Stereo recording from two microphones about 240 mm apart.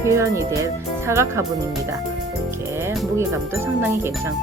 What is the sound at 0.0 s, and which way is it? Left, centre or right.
Speech, centre.